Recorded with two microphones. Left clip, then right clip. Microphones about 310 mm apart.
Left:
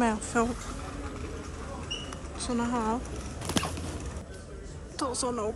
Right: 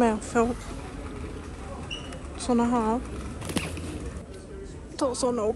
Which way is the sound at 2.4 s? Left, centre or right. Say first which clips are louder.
Right 5 dB; centre.